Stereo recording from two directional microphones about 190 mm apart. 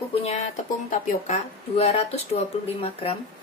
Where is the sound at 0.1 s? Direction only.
30° left (ahead or behind).